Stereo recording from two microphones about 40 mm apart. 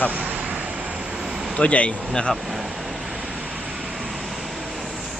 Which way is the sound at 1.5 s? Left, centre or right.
Left.